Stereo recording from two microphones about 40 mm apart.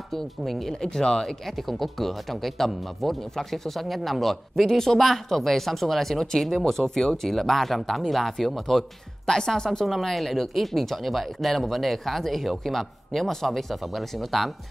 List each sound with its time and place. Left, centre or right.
0.1 s speech: centre
0.7 s speech: centre
1.2 s speech: centre
9.8 s speech: centre